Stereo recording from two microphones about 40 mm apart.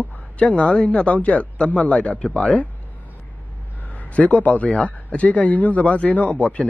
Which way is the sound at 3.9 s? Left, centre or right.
Left.